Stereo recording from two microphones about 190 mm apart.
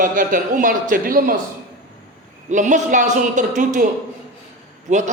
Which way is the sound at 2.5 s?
40° right (ahead or behind).